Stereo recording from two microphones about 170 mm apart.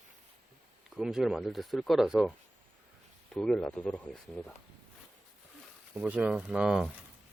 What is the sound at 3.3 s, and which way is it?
Speech, 5° left (ahead or behind).